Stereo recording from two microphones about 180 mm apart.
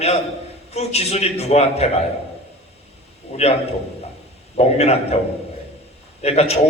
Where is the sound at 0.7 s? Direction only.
35° left (ahead or behind).